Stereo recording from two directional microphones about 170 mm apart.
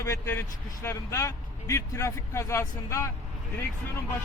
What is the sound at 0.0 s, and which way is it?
A man's voice, 15° left (ahead or behind).